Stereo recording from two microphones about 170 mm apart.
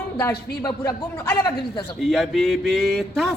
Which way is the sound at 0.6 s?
15° left (ahead or behind).